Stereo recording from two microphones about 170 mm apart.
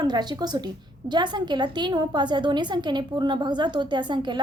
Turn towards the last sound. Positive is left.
turn(degrees=-25)  # may be behind; listen again after turning